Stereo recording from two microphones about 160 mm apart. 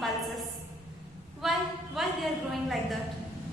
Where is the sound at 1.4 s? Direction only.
Centre (ahead or behind).